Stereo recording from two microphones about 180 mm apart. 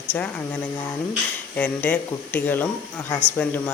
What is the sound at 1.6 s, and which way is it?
Speech, 10° left (ahead or behind).